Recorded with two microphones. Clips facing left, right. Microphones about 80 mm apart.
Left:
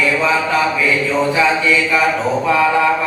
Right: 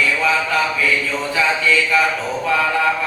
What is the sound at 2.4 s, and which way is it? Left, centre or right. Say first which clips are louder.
Mantra: left 3 dB; left.